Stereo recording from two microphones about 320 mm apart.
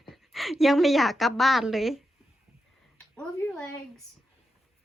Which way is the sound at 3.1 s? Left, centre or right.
Centre.